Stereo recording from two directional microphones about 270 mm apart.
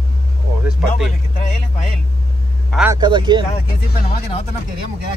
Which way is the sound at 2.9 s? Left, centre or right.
Centre.